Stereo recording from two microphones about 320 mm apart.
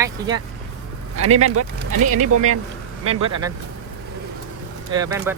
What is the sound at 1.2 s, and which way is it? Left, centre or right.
Speech, right.